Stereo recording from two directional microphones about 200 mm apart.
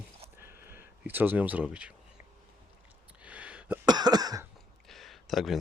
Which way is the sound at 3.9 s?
20° right (ahead or behind).